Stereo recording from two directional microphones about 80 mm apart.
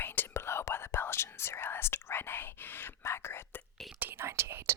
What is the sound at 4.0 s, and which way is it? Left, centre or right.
Whispering, right.